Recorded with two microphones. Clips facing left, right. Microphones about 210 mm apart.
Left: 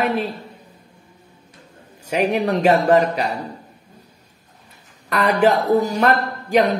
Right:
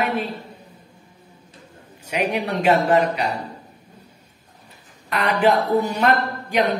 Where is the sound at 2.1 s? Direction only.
45° left (ahead or behind).